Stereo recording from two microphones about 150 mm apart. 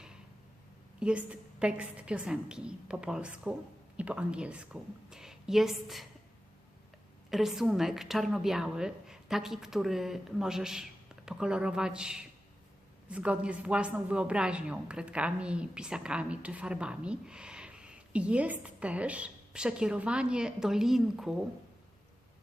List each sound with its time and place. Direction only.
0.9 s speech: 5° right (ahead or behind)
7.3 s a woman's voice: centre (ahead or behind)